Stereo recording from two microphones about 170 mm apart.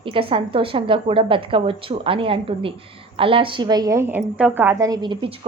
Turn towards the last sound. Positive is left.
turn(degrees=-30)  # may be behind; listen again after turning